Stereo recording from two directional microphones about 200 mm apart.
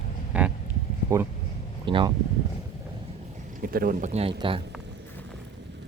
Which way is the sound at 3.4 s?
45° right (ahead or behind).